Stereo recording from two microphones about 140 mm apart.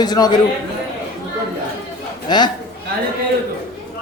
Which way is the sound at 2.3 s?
30° left (ahead or behind).